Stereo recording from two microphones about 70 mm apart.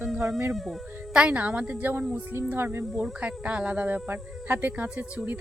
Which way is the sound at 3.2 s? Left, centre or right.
Centre.